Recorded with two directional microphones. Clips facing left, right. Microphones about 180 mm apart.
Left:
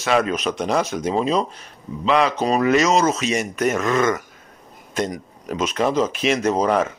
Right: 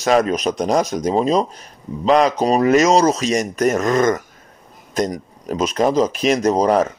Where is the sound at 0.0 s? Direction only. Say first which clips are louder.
Right 4 dB; 40° right (ahead or behind).